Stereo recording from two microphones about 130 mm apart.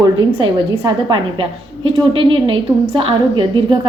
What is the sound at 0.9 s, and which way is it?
A woman's voice, 35° right (ahead or behind).